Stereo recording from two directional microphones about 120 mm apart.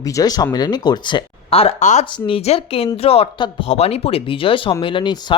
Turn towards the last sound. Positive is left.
turn(degrees=40)  # may be behind; listen again after turning